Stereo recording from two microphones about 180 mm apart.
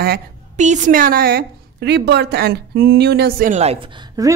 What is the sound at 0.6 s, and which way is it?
Speech, 40° right (ahead or behind).